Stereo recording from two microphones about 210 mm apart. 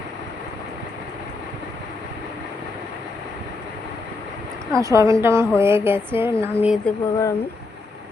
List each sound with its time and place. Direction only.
4.7 s a woman's voice: 15° right (ahead or behind)
6.8 s speech: 15° left (ahead or behind)